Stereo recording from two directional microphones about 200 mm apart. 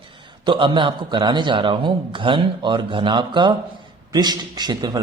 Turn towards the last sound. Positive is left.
turn(degrees=-20)  # may be behind; listen again after turning